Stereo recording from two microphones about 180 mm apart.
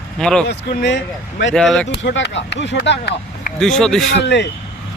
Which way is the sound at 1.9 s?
80° left.